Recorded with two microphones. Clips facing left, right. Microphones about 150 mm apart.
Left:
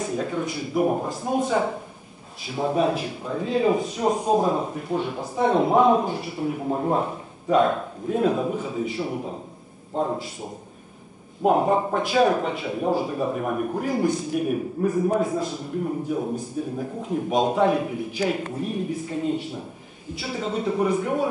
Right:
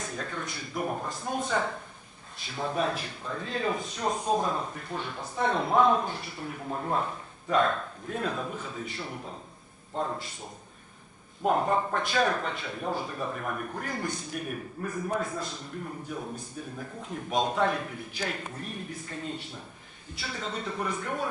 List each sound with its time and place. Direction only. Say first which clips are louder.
0.0 s speech: left 10 dB; 10° left (ahead or behind)
11.4 s speech: left 6 dB; 10° left (ahead or behind)